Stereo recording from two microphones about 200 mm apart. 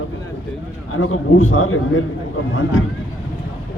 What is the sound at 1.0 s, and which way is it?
A man's voice, 90° left.